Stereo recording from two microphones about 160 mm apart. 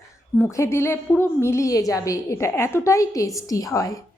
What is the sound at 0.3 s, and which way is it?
A woman's voice, 15° left (ahead or behind).